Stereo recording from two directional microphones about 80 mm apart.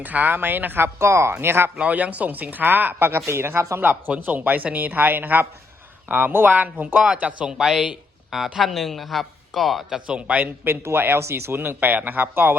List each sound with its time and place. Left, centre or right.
0.0 s speech: right
1.8 s speech: centre; by 3.8 s right
3.8 s speech: right; by 10.0 s centre
10.1 s speech: centre